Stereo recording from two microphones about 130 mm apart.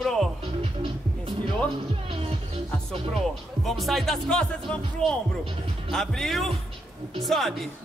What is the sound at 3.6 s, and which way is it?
Speech, centre (ahead or behind).